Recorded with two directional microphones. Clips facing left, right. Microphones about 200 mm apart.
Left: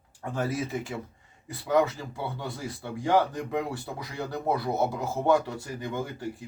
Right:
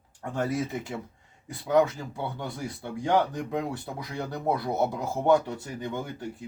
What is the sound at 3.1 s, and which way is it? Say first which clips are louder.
A man's voice: left 1 dB; 5° left (ahead or behind).